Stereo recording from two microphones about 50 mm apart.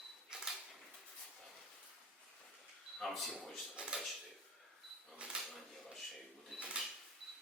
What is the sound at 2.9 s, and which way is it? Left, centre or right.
Speech, centre.